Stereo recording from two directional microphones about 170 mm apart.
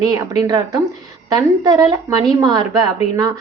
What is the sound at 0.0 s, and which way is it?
A woman's voice, 20° right (ahead or behind).